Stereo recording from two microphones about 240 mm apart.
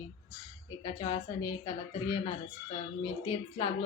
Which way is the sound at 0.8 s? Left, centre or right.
Centre.